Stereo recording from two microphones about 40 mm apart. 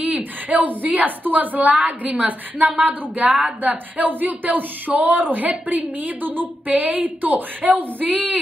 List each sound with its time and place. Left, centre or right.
0.5 s speech: right